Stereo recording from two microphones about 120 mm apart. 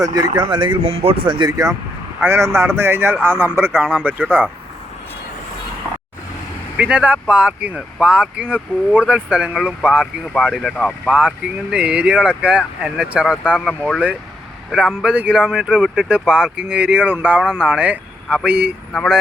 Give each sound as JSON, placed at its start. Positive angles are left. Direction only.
{"t": 0.0, "sound": "speech", "side_deg": -30}
{"t": 0.9, "sound": "speech", "side_deg": -50}
{"t": 6.7, "sound": "speech", "side_deg": -10}